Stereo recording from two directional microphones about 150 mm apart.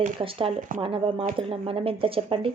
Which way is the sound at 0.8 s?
35° right (ahead or behind).